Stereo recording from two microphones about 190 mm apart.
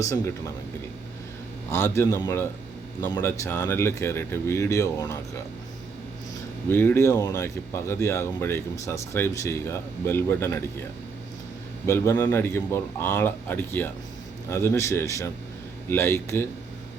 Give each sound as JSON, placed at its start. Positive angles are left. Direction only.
{"t": 0.0, "sound": "speech", "side_deg": 15}
{"t": 1.7, "sound": "speech", "side_deg": 15}
{"t": 6.7, "sound": "speech", "side_deg": 10}
{"t": 11.9, "sound": "speech", "side_deg": 15}